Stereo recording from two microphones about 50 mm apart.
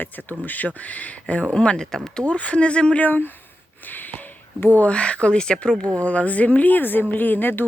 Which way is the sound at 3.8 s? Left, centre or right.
Left.